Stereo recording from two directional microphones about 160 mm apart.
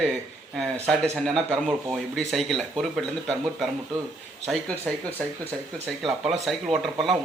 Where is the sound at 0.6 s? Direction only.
15° right (ahead or behind).